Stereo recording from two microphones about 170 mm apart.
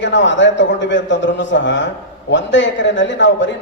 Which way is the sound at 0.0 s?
90° left.